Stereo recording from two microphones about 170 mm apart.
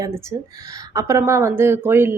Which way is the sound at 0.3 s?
20° right (ahead or behind).